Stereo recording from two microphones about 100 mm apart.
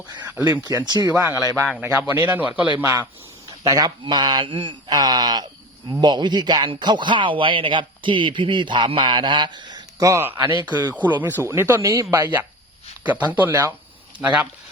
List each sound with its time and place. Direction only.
0.4 s speech: 40° right (ahead or behind)
1.8 s a man's voice: 20° right (ahead or behind)
3.6 s speech: 40° right (ahead or behind); by 4.7 s 55° right (ahead or behind)
4.9 s speech: 40° right (ahead or behind)
10.0 s speech: 30° right (ahead or behind)
10.2 s speech: 20° right (ahead or behind)
10.5 s speech: 45° right (ahead or behind)
10.9 s speech: 15° right (ahead or behind); by 12.3 s 35° right (ahead or behind)
13.1 s a man's voice: 15° right (ahead or behind)